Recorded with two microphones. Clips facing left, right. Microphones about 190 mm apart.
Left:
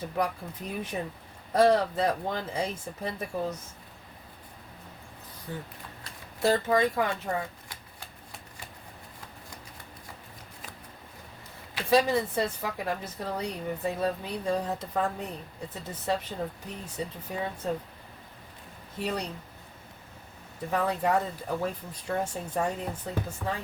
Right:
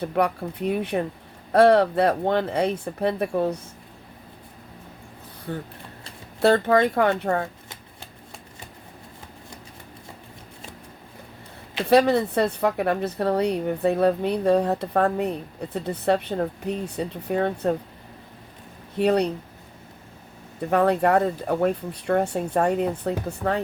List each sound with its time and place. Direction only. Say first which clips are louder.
0.0 s a woman's voice: right 7 dB; 65° right (ahead or behind)
5.5 s a woman's voice: right 7 dB; 60° right (ahead or behind)
11.9 s a woman's voice: right 6 dB; 65° right (ahead or behind)
18.9 s a woman's voice: right 12 dB; 65° right (ahead or behind)
20.7 s a woman's voice: right 8 dB; 65° right (ahead or behind)